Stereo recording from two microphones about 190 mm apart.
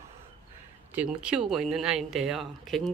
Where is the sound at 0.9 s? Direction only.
5° right (ahead or behind).